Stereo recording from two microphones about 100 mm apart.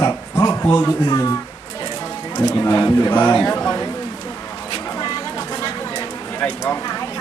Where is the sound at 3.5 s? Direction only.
35° left (ahead or behind).